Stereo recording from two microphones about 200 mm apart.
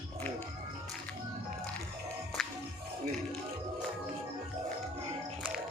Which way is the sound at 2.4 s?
Centre (ahead or behind).